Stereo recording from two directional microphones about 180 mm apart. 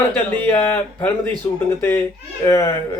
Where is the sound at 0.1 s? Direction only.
10° left (ahead or behind).